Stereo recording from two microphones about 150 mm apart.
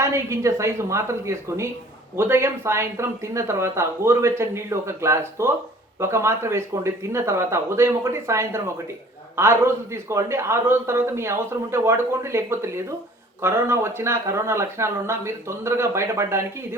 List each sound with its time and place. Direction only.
0.0 s a man's voice: 20° right (ahead or behind)